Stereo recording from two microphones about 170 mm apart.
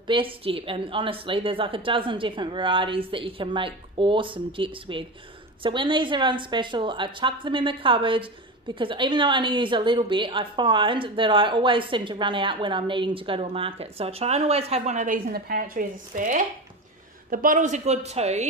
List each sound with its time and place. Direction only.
0.0 s a woman's voice: 30° right (ahead or behind)